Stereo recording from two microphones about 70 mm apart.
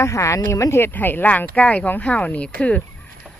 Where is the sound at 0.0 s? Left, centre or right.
Left.